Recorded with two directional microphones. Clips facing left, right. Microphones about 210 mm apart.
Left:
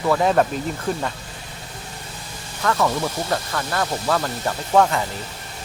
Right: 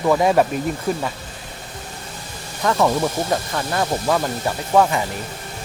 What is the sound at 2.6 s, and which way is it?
Speech, 20° right (ahead or behind).